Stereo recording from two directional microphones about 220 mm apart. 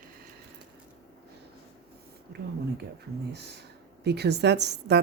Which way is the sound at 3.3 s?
50° right (ahead or behind).